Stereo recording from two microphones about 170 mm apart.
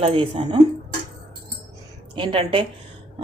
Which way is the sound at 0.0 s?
30° right (ahead or behind).